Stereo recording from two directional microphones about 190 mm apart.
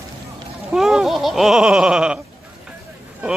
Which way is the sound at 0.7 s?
Centre (ahead or behind).